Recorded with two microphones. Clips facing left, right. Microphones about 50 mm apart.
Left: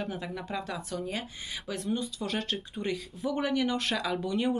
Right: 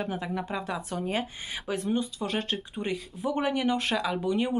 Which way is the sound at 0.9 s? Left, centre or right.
Right.